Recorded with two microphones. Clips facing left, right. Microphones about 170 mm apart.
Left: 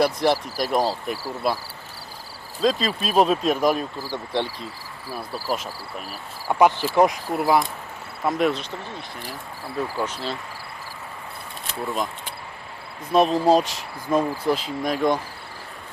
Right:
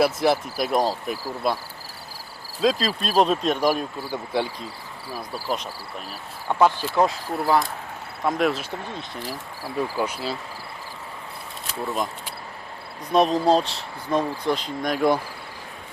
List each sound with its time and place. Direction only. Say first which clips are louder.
0.0 s speech: even; 5° right (ahead or behind)
2.6 s speech: even; centre (ahead or behind)
6.1 s speech: left 1 dB; 10° left (ahead or behind)
8.2 s speech: left 1 dB; centre (ahead or behind)
9.7 s speech: right 1 dB; 10° right (ahead or behind)
13.1 s speech: left 1 dB; centre (ahead or behind)